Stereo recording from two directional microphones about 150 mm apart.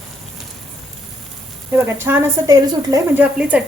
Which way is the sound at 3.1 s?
10° right (ahead or behind).